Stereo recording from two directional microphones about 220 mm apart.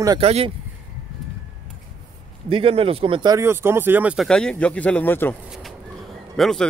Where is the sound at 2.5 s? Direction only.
25° right (ahead or behind); by 5.3 s 10° left (ahead or behind).